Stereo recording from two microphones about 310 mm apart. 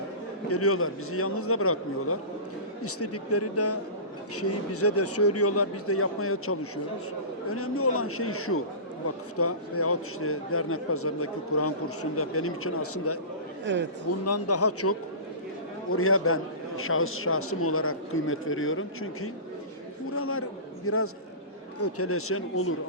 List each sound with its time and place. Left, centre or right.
0.4 s a man's voice: left
13.7 s speech: right
14.3 s a man's voice: left
20.1 s a sound: left
20.8 s a man's voice: left